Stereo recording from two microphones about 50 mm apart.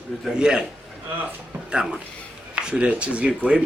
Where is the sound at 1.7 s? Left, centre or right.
Centre.